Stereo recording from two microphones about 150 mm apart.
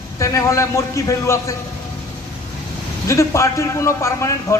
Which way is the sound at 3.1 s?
20° left (ahead or behind).